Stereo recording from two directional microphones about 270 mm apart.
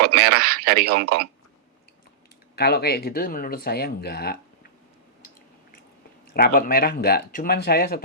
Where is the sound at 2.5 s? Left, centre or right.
Left.